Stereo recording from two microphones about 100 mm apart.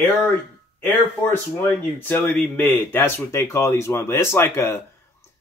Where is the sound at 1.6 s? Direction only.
20° left (ahead or behind).